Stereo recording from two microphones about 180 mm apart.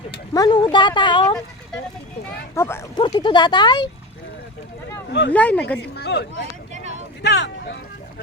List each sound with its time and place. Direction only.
0.3 s speech: 25° left (ahead or behind)
2.6 s speech: 15° left (ahead or behind)
3.0 s speech: 25° left (ahead or behind)
5.3 s speech: 10° left (ahead or behind)
6.0 s speech: 70° left (ahead or behind)
6.7 s a sound: 40° right (ahead or behind)
7.2 s speech: 75° left (ahead or behind)